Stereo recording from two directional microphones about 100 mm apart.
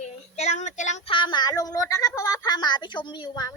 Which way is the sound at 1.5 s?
35° left (ahead or behind).